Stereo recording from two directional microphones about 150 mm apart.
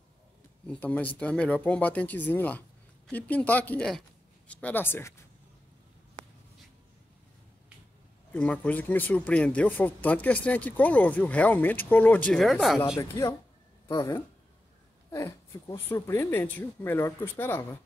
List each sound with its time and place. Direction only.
0.7 s speech: 10° left (ahead or behind)
8.3 s speech: 10° left (ahead or behind)
13.1 s speech: 20° left (ahead or behind)